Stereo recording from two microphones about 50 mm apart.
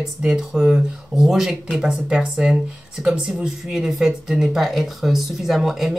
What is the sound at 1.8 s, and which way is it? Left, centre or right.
Speech, centre.